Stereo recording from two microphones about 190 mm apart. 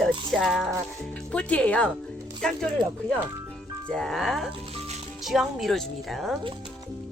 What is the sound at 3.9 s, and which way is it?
A woman's voice, centre (ahead or behind).